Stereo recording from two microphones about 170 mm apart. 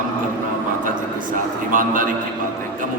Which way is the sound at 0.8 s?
55° right (ahead or behind).